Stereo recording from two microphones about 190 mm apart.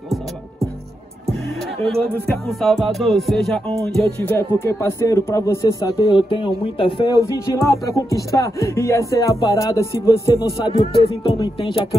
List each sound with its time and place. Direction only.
1.9 s music: centre (ahead or behind)
3.8 s speech: 5° left (ahead or behind); by 7.2 s 25° left (ahead or behind)
7.6 s speech: 15° left (ahead or behind)